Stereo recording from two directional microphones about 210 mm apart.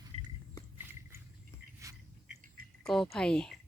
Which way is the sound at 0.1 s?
30° right (ahead or behind).